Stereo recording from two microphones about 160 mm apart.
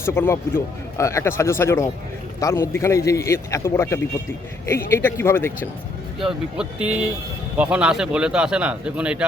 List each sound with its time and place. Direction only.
0.0 s speech: 15° left (ahead or behind)
6.1 s a man's voice: 5° right (ahead or behind)